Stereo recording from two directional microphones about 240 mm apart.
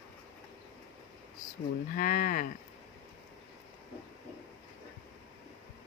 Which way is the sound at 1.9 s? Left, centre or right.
Left.